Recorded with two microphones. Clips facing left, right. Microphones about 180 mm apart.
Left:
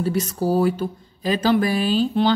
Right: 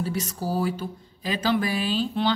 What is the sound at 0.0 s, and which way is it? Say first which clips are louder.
Speech: left 7 dB; 60° left (ahead or behind).